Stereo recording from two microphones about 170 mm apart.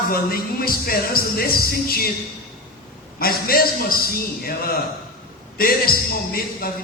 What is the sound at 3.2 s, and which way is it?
A man's voice, 60° left (ahead or behind).